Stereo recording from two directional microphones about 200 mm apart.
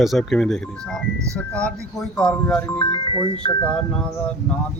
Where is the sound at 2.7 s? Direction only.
25° left (ahead or behind).